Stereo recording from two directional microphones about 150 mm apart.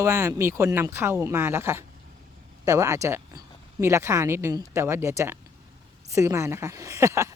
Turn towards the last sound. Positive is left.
turn(degrees=-20)  # may be behind; listen again after turning